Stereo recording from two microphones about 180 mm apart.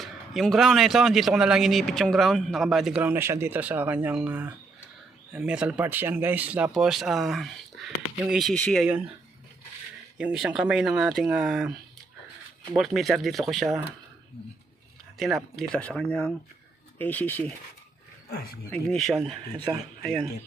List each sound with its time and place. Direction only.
0.0 s speech: centre (ahead or behind)
10.2 s speech: 5° right (ahead or behind)
12.7 s speech: centre (ahead or behind)
15.2 s speech: centre (ahead or behind)
18.7 s speech: 5° left (ahead or behind)
19.5 s speech: 25° right (ahead or behind)
20.0 s speech: centre (ahead or behind)